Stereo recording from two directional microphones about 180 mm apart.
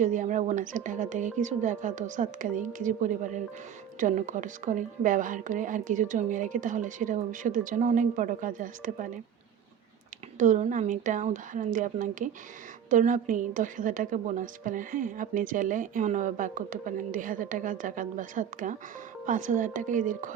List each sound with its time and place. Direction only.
0.0 s a woman's voice: 45° right (ahead or behind)
10.3 s a woman's voice: 40° right (ahead or behind)